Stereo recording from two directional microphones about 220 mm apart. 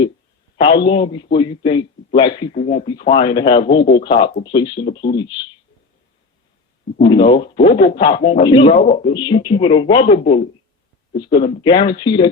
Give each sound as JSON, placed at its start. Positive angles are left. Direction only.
{"t": 0.6, "sound": "speech", "side_deg": 20}
{"t": 7.0, "sound": "speech", "side_deg": 20}
{"t": 8.8, "sound": "speech", "side_deg": 35}
{"t": 9.1, "sound": "speech", "side_deg": 20}